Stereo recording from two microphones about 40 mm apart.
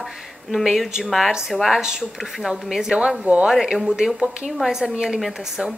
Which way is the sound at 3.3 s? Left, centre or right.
Right.